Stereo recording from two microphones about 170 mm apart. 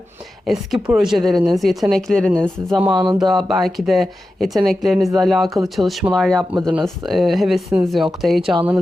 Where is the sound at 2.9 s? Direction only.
25° right (ahead or behind).